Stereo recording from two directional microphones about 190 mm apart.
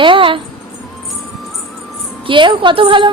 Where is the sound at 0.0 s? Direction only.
25° right (ahead or behind).